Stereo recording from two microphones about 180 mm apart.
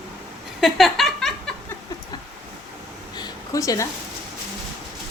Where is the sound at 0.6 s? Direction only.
Centre (ahead or behind).